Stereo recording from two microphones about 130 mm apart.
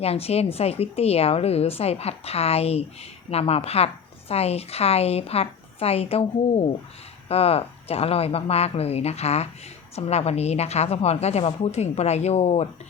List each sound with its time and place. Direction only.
0.0 s a woman's voice: 50° left (ahead or behind)
7.3 s a woman's voice: 50° left (ahead or behind)